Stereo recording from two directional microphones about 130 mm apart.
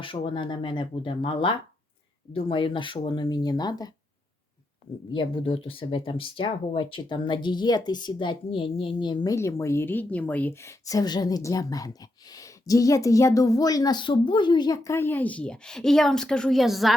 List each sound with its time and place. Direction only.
0.0 s speech: 40° left (ahead or behind)
5.1 s speech: 40° left (ahead or behind)
9.3 s speech: 20° left (ahead or behind); by 16.9 s centre (ahead or behind)